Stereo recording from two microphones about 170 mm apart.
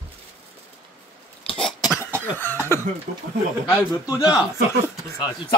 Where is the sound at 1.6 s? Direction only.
Centre (ahead or behind).